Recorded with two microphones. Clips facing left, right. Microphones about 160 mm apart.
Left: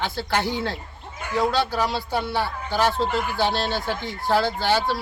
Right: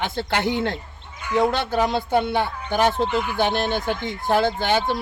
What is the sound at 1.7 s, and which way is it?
Speech, 20° right (ahead or behind).